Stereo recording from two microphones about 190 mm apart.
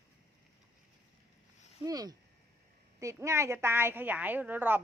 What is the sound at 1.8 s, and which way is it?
A woman's voice, 20° right (ahead or behind).